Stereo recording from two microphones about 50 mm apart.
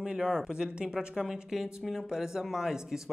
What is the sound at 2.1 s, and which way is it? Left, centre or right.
Speech, centre.